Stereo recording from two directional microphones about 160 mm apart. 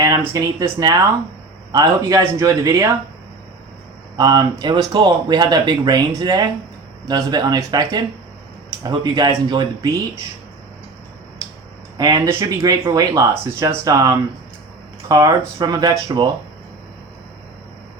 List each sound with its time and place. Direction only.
0.3 s speech: 20° right (ahead or behind)
4.2 s speech: 25° right (ahead or behind)
11.9 s speech: 25° right (ahead or behind)